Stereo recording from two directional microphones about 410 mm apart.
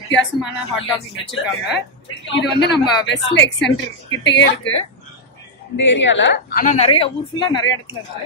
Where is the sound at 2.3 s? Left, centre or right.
Left.